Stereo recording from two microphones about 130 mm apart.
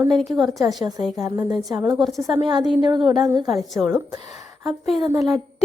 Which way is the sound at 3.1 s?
30° right (ahead or behind).